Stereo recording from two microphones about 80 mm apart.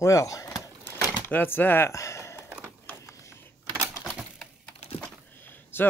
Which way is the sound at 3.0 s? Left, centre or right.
Left.